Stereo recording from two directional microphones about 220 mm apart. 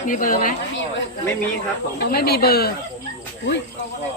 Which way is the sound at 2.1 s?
45° left (ahead or behind).